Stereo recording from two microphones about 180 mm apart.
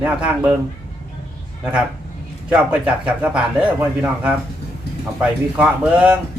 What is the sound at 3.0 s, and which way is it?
Speech, 5° right (ahead or behind).